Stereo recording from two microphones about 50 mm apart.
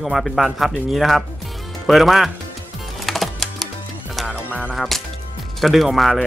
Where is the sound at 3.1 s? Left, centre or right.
Centre.